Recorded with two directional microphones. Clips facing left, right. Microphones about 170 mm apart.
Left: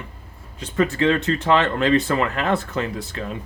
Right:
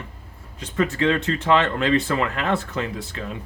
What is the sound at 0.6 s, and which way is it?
Speech, 35° left (ahead or behind).